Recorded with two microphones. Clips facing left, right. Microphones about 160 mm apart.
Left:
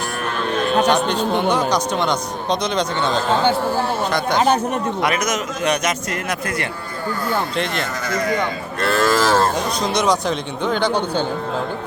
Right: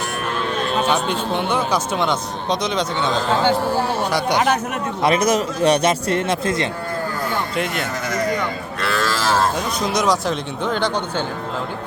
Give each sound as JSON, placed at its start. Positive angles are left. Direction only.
{"t": 0.9, "sound": "a man's voice", "side_deg": -5}
{"t": 4.4, "sound": "speech", "side_deg": 30}
{"t": 5.0, "sound": "a man's voice", "side_deg": -30}
{"t": 7.5, "sound": "speech", "side_deg": -5}
{"t": 8.8, "sound": "cattle", "side_deg": 50}
{"t": 9.8, "sound": "a man's voice", "side_deg": 0}